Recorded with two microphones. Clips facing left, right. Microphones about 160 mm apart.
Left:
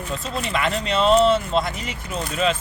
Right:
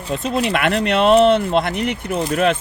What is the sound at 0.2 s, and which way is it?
Speech, 70° right (ahead or behind).